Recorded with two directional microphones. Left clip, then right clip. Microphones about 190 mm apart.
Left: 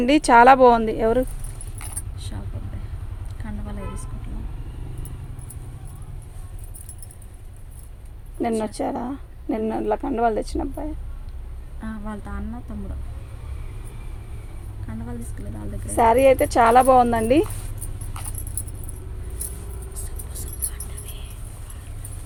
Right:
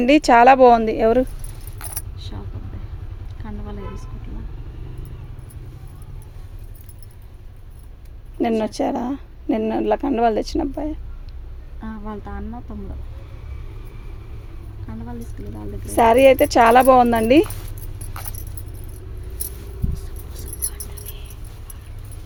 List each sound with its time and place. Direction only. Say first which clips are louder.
0.0 s speech: right 1 dB; 25° right (ahead or behind)
2.1 s vehicle: right 1 dB; 10° left (ahead or behind)
3.4 s a sound: right 1 dB; 10° left (ahead or behind)
8.4 s a woman's voice: right 4 dB; 45° right (ahead or behind)
11.8 s speech: right 2 dB; 10° left (ahead or behind)
15.9 s a woman's voice: right 3 dB; 45° right (ahead or behind)
19.9 s keys jangling: right 1 dB; 10° left (ahead or behind)